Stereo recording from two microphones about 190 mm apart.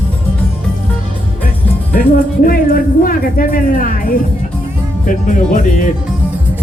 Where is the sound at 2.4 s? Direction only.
50° left (ahead or behind).